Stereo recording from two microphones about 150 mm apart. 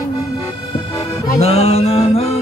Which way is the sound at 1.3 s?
45° left (ahead or behind).